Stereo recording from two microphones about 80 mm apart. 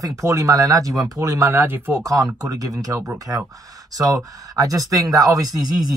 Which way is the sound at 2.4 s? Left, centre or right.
Right.